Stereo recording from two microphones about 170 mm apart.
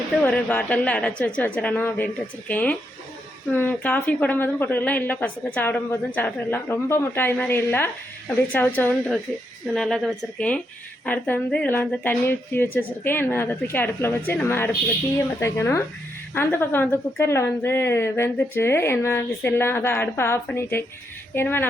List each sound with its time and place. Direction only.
0.2 s a woman's voice: 10° left (ahead or behind)